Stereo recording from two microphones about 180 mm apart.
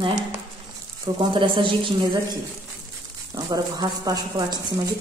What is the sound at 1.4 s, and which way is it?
Speech, 25° right (ahead or behind).